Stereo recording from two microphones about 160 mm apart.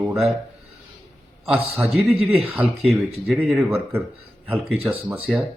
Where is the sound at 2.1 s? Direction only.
40° right (ahead or behind).